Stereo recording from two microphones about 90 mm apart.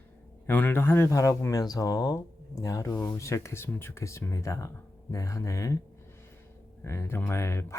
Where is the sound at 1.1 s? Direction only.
40° left (ahead or behind).